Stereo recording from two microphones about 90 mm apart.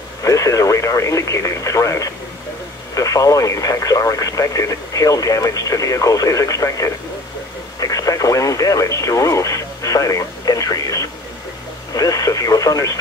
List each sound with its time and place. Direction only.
0.2 s speech: 35° left (ahead or behind)